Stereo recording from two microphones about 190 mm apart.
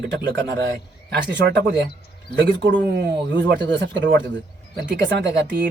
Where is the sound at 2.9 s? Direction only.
60° right (ahead or behind).